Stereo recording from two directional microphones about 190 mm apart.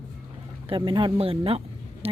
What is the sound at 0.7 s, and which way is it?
A woman's voice, 25° right (ahead or behind).